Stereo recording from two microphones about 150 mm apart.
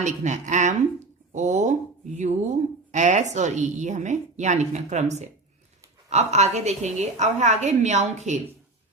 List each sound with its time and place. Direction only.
0.0 s a woman's voice: 55° right (ahead or behind)
2.9 s a woman's voice: 55° right (ahead or behind)